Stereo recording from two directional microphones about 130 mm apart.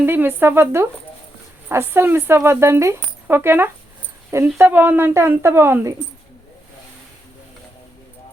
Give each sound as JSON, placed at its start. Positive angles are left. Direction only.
{"t": 0.0, "sound": "a woman's voice", "side_deg": -15}